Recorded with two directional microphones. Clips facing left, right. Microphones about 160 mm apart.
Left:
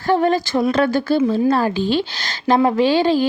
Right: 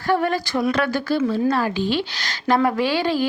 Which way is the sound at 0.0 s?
25° left (ahead or behind).